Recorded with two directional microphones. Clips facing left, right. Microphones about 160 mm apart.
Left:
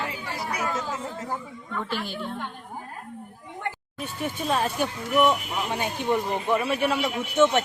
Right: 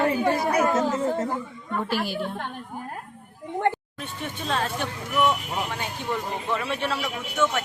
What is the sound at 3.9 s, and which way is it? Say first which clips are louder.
Speech: left 3 dB; 5° left (ahead or behind).